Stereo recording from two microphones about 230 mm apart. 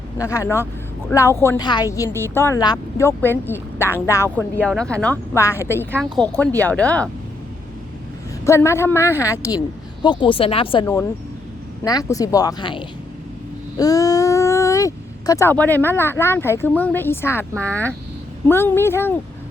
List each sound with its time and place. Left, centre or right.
0.2 s a woman's voice: centre
8.4 s a woman's voice: centre
18.4 s a woman's voice: centre